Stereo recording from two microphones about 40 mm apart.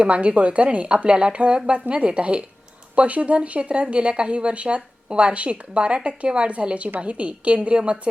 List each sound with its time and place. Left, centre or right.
0.0 s a woman's voice: right